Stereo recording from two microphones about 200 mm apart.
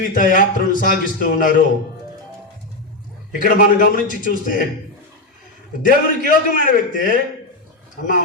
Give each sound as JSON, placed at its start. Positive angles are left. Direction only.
{"t": 0.0, "sound": "a man's voice", "side_deg": 40}
{"t": 3.3, "sound": "a man's voice", "side_deg": 40}
{"t": 5.8, "sound": "a man's voice", "side_deg": 40}